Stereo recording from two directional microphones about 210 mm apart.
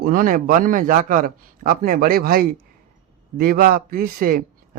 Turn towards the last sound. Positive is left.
turn(degrees=-45)  # may be behind; listen again after turning